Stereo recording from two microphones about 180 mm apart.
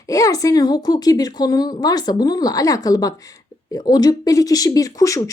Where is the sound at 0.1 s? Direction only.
20° left (ahead or behind).